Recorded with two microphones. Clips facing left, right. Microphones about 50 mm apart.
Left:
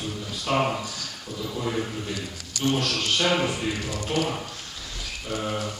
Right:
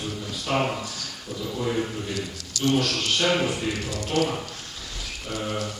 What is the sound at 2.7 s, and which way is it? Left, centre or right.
Speech, centre.